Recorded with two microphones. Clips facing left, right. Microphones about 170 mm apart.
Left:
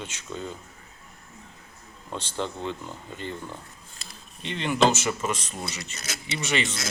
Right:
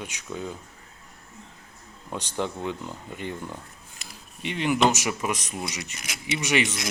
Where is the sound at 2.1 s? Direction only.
15° right (ahead or behind).